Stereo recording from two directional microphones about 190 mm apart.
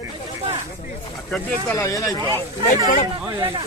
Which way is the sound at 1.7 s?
15° left (ahead or behind).